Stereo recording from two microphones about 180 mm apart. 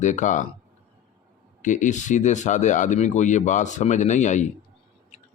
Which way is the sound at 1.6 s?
45° left (ahead or behind).